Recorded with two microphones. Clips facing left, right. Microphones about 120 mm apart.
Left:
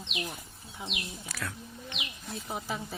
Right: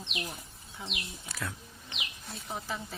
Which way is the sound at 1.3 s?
20° right (ahead or behind).